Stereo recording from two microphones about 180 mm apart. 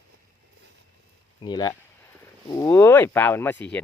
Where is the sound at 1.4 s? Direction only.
25° left (ahead or behind).